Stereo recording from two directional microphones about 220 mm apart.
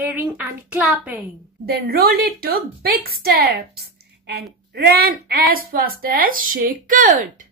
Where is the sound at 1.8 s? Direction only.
45° right (ahead or behind).